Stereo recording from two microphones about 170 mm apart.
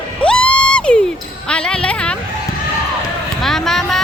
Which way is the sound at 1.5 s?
5° left (ahead or behind).